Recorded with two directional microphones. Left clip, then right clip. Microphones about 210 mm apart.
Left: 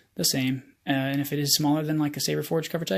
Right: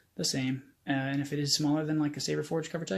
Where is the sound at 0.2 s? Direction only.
40° left (ahead or behind).